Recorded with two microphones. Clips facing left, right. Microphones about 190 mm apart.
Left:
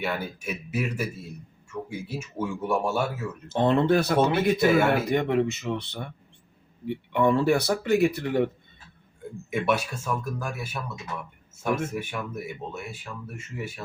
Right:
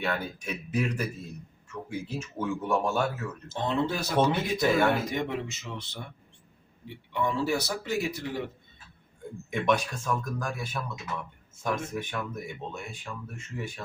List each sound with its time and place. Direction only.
0.0 s speech: 10° left (ahead or behind)
3.5 s speech: 60° left (ahead or behind)
9.5 s speech: 5° left (ahead or behind)